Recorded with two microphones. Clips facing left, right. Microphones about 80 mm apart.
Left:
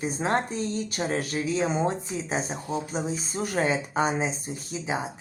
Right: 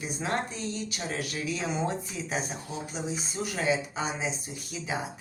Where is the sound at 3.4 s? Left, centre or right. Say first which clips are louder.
Left 3 dB; left.